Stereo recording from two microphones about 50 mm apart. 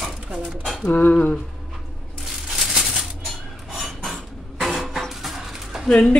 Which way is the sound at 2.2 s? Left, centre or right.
Centre.